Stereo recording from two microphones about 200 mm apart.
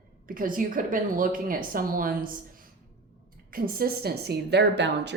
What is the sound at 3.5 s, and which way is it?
Speech, 50° right (ahead or behind).